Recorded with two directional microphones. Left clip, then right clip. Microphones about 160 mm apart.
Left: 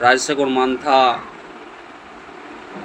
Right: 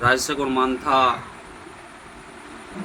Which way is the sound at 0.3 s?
15° right (ahead or behind).